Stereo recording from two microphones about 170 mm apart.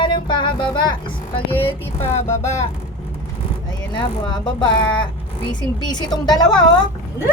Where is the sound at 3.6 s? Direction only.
25° left (ahead or behind).